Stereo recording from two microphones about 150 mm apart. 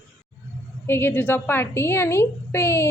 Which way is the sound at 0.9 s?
15° left (ahead or behind).